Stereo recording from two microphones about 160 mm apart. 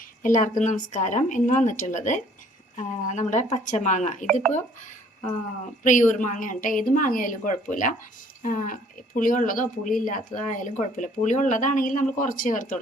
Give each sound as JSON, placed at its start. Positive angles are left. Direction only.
{"t": 0.2, "sound": "speech", "side_deg": 55}
{"t": 5.8, "sound": "speech", "side_deg": 55}